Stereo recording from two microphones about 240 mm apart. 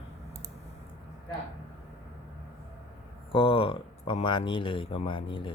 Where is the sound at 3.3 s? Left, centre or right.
Left.